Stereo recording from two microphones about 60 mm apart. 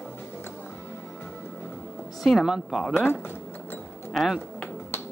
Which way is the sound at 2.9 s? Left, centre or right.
Left.